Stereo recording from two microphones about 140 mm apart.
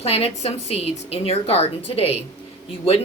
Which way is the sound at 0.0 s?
45° left (ahead or behind).